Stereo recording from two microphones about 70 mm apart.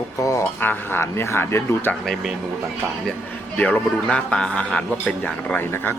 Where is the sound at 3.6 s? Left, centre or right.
Left.